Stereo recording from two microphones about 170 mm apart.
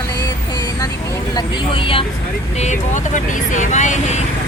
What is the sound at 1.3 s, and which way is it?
Speech, 30° left (ahead or behind).